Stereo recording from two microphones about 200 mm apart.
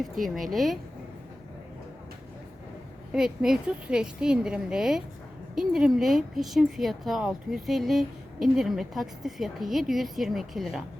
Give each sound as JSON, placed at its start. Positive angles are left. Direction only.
{"t": 0.0, "sound": "speech", "side_deg": 0}
{"t": 3.1, "sound": "speech", "side_deg": -5}